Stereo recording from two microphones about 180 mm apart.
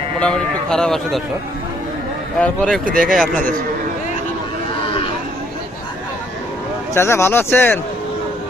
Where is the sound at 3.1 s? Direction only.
5° left (ahead or behind).